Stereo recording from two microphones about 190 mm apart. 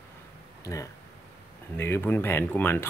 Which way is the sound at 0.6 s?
15° left (ahead or behind).